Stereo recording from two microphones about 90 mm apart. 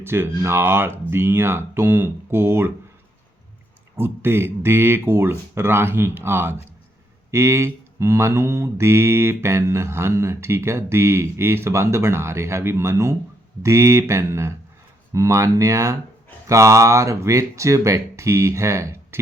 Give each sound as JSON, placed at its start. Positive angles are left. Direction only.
{"t": 0.0, "sound": "speech", "side_deg": -25}
{"t": 3.9, "sound": "speech", "side_deg": -25}
{"t": 7.3, "sound": "mantra", "side_deg": -35}